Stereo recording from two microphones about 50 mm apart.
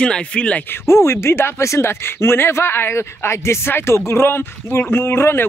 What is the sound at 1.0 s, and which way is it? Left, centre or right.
Speech, left.